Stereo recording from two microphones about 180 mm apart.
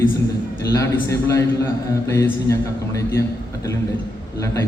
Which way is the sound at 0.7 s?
15° left (ahead or behind).